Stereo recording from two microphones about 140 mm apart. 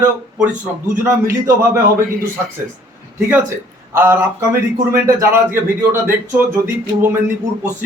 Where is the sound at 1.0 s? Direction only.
20° right (ahead or behind).